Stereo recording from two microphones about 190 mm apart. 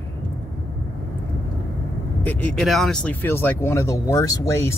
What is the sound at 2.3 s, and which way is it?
Speech, centre (ahead or behind).